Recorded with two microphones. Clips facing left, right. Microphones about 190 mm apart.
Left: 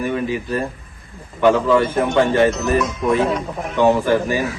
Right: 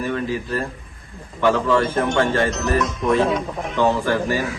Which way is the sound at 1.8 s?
5° left (ahead or behind).